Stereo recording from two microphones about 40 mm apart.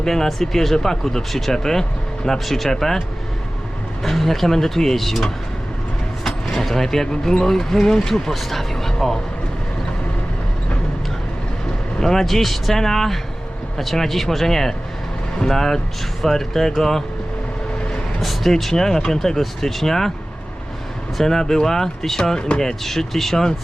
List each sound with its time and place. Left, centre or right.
0.0 s speech: centre
4.0 s speech: centre
11.9 s speech: centre
18.2 s speech: centre
21.2 s speech: centre
22.4 s speech: left
22.6 s speech: centre